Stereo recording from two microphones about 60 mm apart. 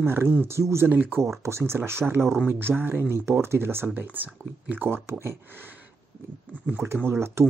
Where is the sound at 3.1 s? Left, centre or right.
Right.